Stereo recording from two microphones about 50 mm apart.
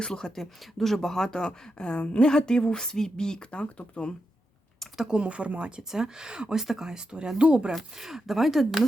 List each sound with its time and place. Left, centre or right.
0.0 s speech: centre
4.9 s speech: centre
5.9 s speech: centre
7.7 s speech: centre